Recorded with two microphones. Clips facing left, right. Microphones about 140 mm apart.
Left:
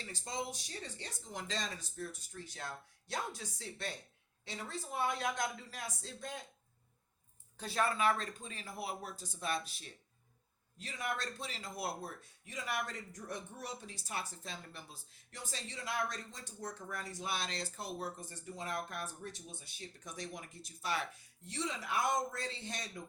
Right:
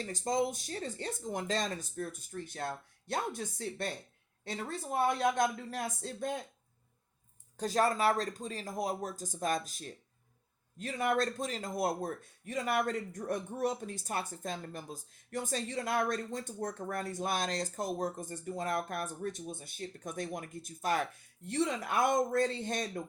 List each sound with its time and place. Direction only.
0.0 s a man's voice: 45° right (ahead or behind)
7.5 s a man's voice: 40° right (ahead or behind)